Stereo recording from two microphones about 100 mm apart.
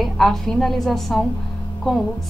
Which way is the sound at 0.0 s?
5° left (ahead or behind).